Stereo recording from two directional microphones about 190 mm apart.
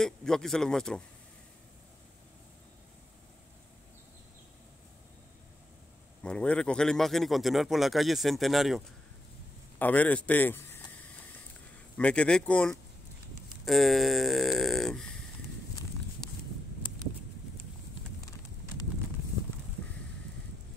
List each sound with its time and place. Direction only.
0.0 s speech: 5° left (ahead or behind)
6.2 s speech: 5° left (ahead or behind)
12.0 s speech: 5° left (ahead or behind)
16.8 s a sound: 25° left (ahead or behind)